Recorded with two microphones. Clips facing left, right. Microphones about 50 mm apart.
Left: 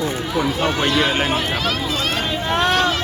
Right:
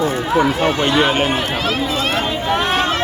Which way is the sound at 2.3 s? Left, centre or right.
Centre.